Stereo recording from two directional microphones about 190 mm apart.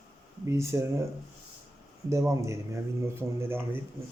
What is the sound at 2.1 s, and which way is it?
Speech, 15° right (ahead or behind).